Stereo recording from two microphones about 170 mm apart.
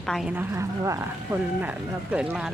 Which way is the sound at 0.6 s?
15° right (ahead or behind).